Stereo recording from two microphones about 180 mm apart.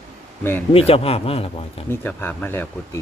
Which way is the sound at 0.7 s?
30° left (ahead or behind).